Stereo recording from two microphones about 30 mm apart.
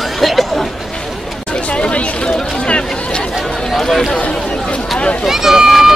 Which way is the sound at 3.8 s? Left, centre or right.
Centre.